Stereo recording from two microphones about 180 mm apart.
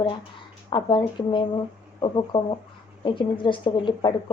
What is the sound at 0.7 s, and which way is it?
Speech, 25° left (ahead or behind).